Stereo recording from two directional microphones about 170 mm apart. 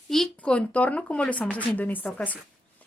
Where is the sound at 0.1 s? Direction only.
5° left (ahead or behind).